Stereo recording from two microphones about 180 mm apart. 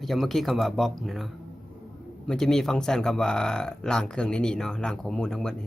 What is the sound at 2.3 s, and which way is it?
Speech, 5° left (ahead or behind).